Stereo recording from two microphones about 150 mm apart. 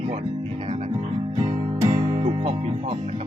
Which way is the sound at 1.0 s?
40° right (ahead or behind).